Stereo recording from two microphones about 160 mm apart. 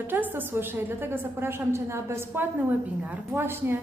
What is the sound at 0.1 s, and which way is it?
A woman's voice, 10° right (ahead or behind).